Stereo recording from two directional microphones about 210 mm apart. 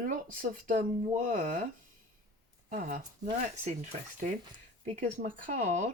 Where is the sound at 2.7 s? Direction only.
40° right (ahead or behind).